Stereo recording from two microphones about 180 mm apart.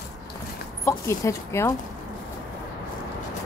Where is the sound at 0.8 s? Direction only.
15° left (ahead or behind).